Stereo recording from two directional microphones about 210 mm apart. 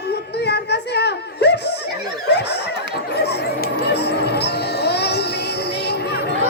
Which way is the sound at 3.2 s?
50° left (ahead or behind).